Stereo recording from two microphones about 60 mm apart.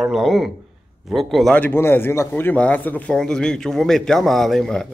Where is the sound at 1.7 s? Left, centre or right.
Left.